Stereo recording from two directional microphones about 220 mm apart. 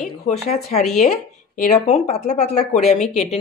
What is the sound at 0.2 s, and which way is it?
Speech, 30° left (ahead or behind).